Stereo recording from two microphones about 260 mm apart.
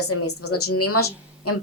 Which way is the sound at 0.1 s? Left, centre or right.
Left.